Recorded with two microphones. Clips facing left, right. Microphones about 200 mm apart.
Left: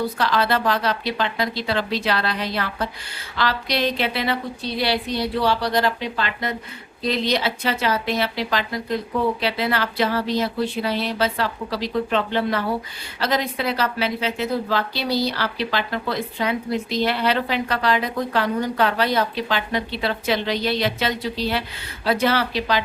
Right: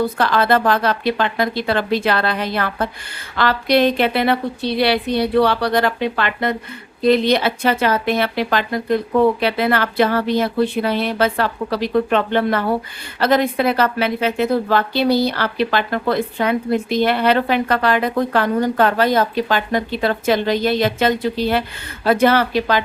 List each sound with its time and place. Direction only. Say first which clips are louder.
0.0 s a woman's voice: right 4 dB; 50° right (ahead or behind)